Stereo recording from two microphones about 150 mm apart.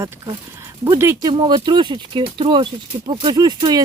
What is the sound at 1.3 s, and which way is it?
Speech, 30° right (ahead or behind).